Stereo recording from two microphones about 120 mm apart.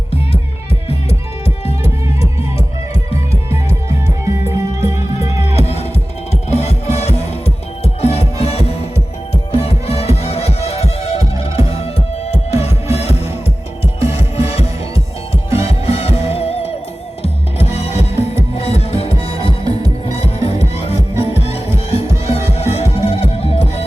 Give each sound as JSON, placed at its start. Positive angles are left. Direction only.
{"t": 3.1, "sound": "music", "side_deg": 55}
{"t": 4.9, "sound": "music", "side_deg": -25}
{"t": 5.5, "sound": "music", "side_deg": 60}